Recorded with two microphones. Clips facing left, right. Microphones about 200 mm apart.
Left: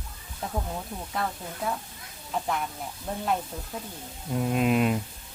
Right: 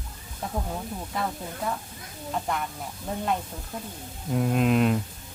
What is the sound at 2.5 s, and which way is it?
Speech, centre (ahead or behind).